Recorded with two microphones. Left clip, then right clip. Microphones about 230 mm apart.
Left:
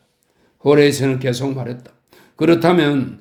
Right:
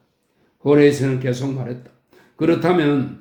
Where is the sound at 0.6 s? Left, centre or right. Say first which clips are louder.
Left 1 dB; left.